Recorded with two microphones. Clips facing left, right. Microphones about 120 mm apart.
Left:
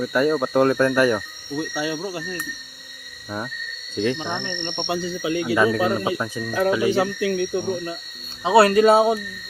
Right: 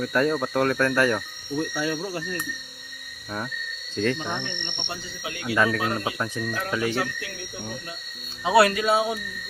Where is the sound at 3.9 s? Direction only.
10° left (ahead or behind).